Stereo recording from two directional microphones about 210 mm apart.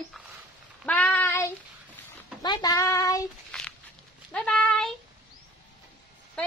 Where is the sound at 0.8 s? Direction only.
5° left (ahead or behind).